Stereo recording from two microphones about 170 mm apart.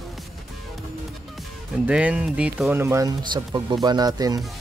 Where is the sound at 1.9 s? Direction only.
5° right (ahead or behind); by 4.4 s 25° right (ahead or behind).